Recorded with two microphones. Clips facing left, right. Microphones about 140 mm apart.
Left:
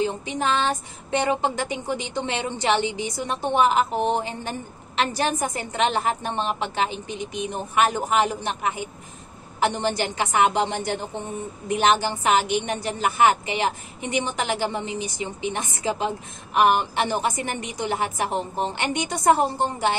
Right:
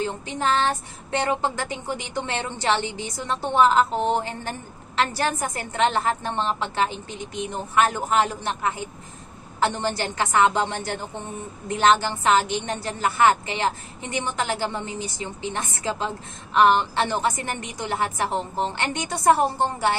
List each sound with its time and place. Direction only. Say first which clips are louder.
0.0 s speech: left 1 dB; 15° left (ahead or behind)